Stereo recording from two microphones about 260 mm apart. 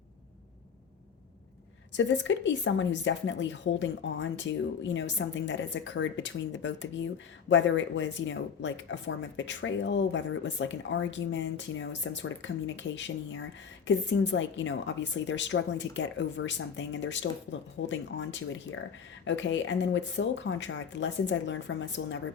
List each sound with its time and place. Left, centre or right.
1.9 s speech: left